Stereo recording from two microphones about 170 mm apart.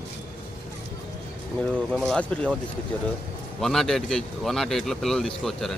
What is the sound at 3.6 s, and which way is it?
Speech, centre (ahead or behind).